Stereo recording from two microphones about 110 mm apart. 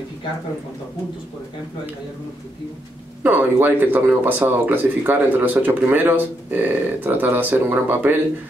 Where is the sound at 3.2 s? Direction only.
15° right (ahead or behind).